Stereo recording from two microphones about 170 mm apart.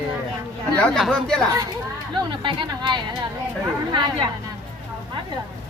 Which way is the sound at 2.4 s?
30° right (ahead or behind).